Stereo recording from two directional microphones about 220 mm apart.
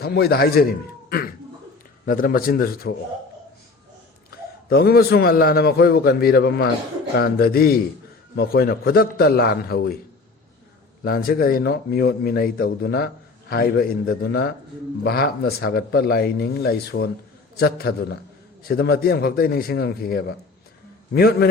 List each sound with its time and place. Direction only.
0.0 s a man's voice: 45° left (ahead or behind)
2.0 s speech: 40° left (ahead or behind)
4.3 s a man's voice: 45° left (ahead or behind)
11.0 s a man's voice: 40° left (ahead or behind)